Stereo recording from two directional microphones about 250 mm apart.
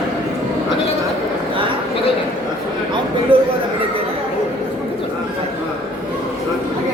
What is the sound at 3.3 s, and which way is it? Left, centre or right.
Chatter, right.